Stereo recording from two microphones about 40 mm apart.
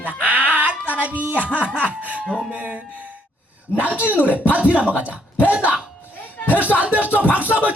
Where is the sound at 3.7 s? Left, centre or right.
Right.